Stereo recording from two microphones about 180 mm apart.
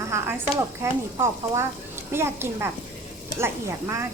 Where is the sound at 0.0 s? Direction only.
15° right (ahead or behind).